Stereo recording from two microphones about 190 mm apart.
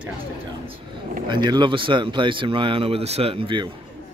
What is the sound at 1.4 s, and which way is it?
Speech, 25° right (ahead or behind).